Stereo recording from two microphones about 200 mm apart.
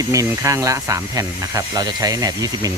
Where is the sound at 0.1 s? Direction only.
15° right (ahead or behind).